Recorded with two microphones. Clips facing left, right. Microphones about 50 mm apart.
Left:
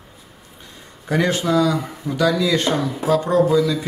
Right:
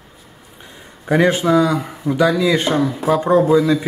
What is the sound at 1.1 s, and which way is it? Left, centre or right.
Speech, right.